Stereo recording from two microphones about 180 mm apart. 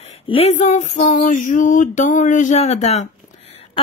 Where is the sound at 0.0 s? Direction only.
35° left (ahead or behind).